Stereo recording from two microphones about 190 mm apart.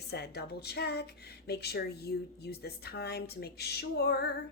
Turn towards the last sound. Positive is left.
turn(degrees=60)  # may be behind; listen again after turning